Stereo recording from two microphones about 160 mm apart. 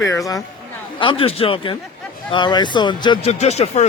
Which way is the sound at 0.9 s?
35° left (ahead or behind).